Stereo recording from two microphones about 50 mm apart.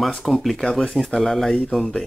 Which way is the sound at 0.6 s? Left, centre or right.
Centre.